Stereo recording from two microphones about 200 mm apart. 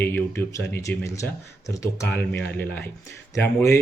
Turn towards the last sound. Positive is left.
turn(degrees=15)  # may be behind; listen again after turning